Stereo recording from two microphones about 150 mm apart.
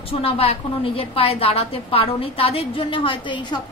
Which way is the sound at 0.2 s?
40° left (ahead or behind).